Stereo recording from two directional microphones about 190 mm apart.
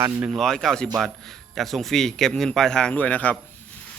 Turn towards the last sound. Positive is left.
turn(degrees=10)  # may be behind; listen again after turning